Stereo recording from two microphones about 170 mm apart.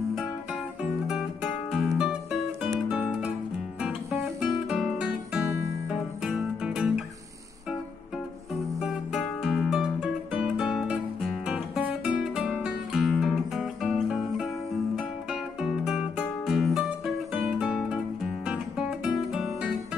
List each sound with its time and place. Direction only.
1.7 s music: centre (ahead or behind)
8.7 s music: centre (ahead or behind)
15.6 s music: 5° right (ahead or behind)